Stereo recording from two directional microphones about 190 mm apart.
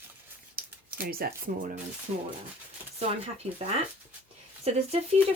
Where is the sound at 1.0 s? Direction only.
50° right (ahead or behind).